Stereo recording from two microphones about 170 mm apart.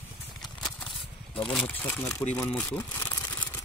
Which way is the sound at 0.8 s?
Centre (ahead or behind).